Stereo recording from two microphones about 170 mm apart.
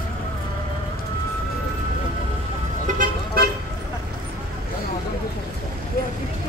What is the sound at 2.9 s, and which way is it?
Vehicle, 50° right (ahead or behind).